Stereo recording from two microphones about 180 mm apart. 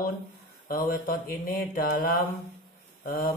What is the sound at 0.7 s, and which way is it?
Mantra, 55° left (ahead or behind).